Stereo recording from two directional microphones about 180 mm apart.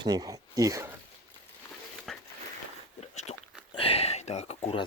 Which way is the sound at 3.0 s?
35° left (ahead or behind).